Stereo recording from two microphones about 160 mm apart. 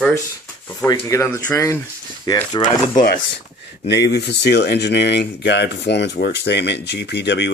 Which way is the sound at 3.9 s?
90° left.